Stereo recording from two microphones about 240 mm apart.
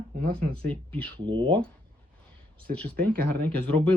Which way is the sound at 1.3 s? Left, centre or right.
Centre.